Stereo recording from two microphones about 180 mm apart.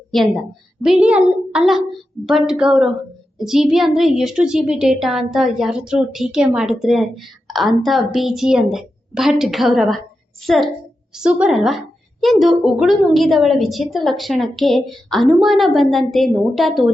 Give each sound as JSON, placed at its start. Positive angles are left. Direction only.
{"t": 0.1, "sound": "a woman's voice", "side_deg": 0}